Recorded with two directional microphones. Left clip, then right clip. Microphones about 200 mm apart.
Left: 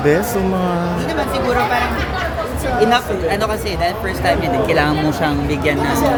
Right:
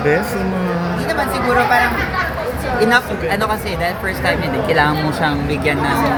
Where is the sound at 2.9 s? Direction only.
15° left (ahead or behind).